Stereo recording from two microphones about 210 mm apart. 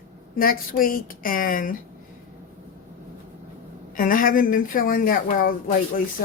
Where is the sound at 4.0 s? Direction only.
40° left (ahead or behind).